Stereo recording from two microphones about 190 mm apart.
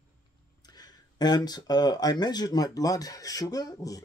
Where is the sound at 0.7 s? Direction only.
20° left (ahead or behind).